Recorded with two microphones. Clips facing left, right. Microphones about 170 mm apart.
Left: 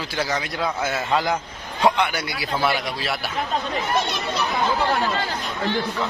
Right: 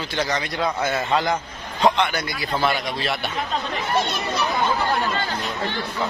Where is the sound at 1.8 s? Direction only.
10° left (ahead or behind).